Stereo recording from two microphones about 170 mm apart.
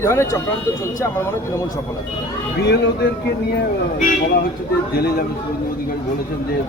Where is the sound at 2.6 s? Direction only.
85° left.